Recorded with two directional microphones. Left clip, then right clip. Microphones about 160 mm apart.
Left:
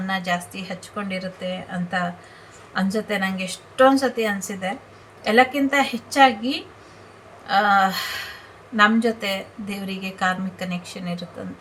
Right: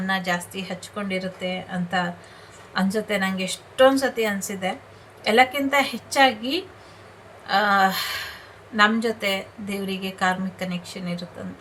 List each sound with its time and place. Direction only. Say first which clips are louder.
0.1 s a woman's voice: even; 5° right (ahead or behind)